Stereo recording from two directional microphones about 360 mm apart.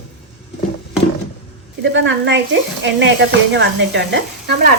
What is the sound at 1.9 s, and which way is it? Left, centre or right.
A woman's voice, right.